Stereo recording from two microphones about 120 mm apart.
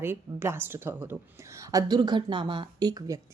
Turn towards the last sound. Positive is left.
turn(degrees=-30)  # may be behind; listen again after turning